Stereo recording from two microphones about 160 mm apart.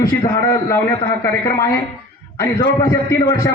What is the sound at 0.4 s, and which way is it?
A man's voice, 20° left (ahead or behind).